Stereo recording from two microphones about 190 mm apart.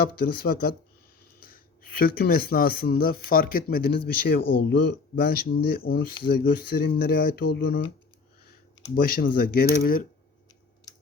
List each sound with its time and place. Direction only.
0.0 s speech: 55° left (ahead or behind)
9.0 s speech: 50° left (ahead or behind)